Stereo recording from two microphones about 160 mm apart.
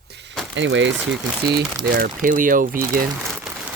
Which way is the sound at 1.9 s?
60° right (ahead or behind).